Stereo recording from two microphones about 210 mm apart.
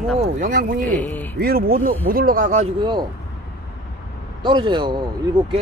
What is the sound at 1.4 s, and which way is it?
Speech, 45° right (ahead or behind).